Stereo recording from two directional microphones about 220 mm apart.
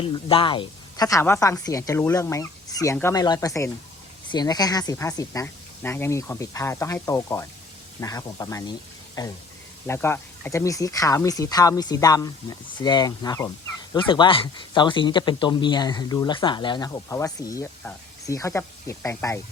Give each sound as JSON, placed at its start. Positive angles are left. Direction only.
{"t": 0.0, "sound": "speech", "side_deg": 25}